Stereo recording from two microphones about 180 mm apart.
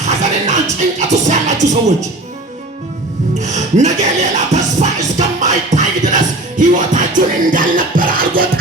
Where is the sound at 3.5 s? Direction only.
40° right (ahead or behind).